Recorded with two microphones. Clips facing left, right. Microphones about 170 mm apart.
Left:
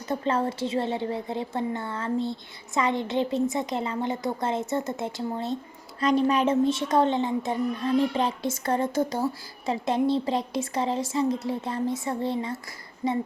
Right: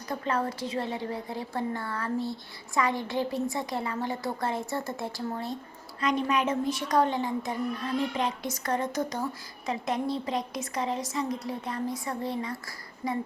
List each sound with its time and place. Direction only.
0.1 s a child's voice: 25° left (ahead or behind)
6.0 s a child's voice: 35° left (ahead or behind)